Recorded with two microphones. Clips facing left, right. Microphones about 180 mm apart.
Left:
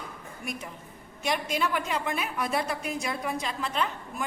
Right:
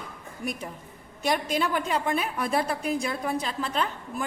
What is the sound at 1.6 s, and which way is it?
A woman's voice, 35° right (ahead or behind).